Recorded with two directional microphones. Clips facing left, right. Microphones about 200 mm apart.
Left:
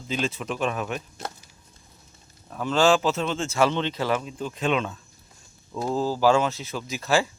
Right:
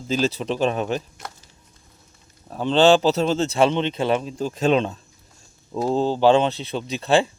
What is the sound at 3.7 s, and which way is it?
Speech, 20° right (ahead or behind).